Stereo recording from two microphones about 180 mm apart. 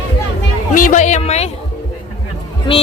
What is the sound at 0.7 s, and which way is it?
Speech, 50° left (ahead or behind).